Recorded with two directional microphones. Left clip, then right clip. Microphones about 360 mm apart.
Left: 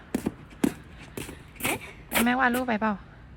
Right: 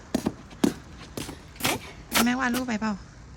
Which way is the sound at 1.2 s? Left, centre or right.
Centre.